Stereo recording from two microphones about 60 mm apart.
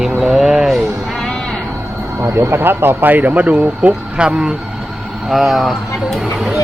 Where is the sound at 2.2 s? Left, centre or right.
Right.